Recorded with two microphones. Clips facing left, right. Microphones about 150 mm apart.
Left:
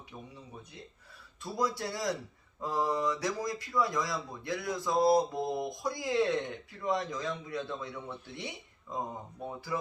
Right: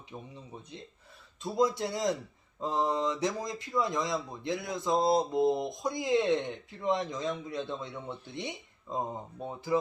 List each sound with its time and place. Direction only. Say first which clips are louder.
0.1 s speech: right 4 dB; 25° right (ahead or behind)